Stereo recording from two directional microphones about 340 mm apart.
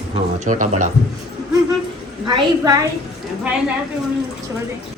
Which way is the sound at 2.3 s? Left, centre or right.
Centre.